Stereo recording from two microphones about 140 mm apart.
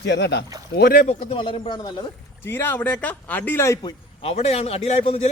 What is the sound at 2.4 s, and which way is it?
A man's voice, 15° left (ahead or behind).